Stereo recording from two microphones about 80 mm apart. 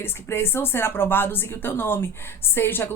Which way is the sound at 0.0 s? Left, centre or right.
Left.